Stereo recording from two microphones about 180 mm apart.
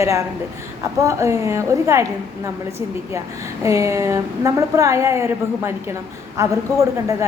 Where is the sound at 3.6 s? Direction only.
15° right (ahead or behind).